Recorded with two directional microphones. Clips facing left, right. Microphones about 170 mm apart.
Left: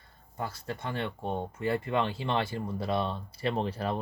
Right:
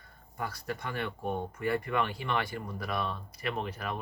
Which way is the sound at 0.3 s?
25° left (ahead or behind).